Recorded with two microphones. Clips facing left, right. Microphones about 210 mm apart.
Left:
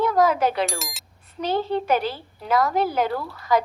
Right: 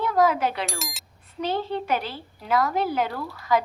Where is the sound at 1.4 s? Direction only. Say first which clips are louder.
Left 3 dB; 40° left (ahead or behind).